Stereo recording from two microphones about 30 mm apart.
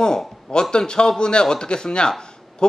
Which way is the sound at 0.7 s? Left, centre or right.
Left.